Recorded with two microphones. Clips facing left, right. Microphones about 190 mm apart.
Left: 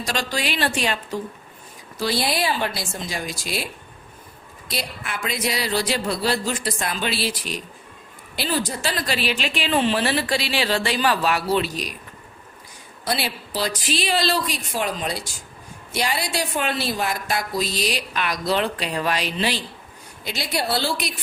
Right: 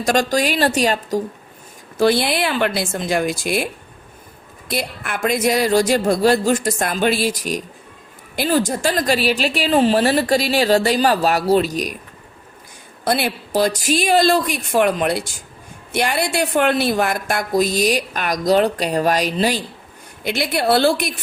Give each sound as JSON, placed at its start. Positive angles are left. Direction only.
{"t": 0.0, "sound": "speech", "side_deg": -50}
{"t": 2.0, "sound": "speech", "side_deg": -55}
{"t": 4.7, "sound": "speech", "side_deg": -50}
{"t": 13.1, "sound": "speech", "side_deg": -55}
{"t": 20.2, "sound": "speech", "side_deg": -60}